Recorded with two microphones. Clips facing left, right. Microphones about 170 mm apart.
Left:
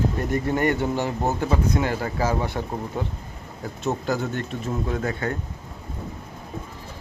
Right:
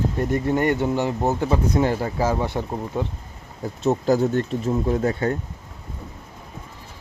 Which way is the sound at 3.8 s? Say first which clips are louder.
Right 6 dB; 35° right (ahead or behind).